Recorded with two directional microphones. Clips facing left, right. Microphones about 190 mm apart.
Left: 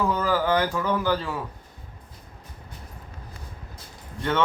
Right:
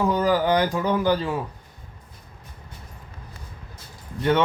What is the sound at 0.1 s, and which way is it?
Speech, 20° right (ahead or behind).